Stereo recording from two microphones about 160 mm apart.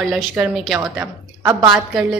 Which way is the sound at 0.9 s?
20° right (ahead or behind).